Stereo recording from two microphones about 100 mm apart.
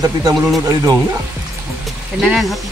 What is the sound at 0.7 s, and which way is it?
Speech, 35° right (ahead or behind).